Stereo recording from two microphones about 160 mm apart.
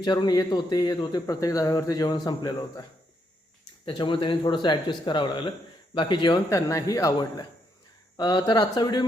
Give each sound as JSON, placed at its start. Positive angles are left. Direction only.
{"t": 0.0, "sound": "speech", "side_deg": 25}
{"t": 3.8, "sound": "speech", "side_deg": 30}